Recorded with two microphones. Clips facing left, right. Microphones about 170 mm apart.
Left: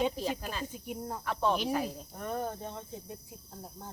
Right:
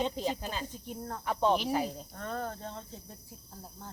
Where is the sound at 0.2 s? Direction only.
25° right (ahead or behind).